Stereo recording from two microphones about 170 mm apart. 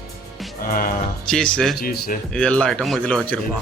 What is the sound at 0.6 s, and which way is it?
Music, 55° left (ahead or behind).